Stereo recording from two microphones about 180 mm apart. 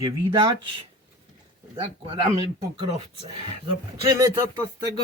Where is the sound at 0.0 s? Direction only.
25° right (ahead or behind).